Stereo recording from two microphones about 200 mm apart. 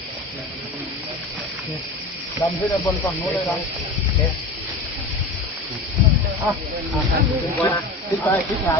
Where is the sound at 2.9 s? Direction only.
Centre (ahead or behind).